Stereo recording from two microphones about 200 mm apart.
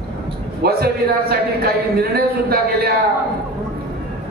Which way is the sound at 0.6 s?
50° right (ahead or behind).